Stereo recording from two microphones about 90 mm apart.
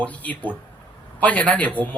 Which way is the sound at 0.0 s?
15° left (ahead or behind).